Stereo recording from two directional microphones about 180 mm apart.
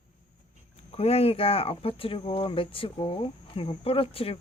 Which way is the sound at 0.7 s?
35° left (ahead or behind).